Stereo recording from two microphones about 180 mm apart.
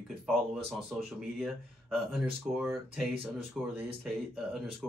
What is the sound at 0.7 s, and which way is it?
Speech, centre (ahead or behind).